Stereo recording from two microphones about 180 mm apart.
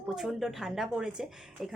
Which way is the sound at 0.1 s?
Centre (ahead or behind).